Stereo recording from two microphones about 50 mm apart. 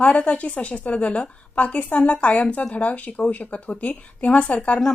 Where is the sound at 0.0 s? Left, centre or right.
Left.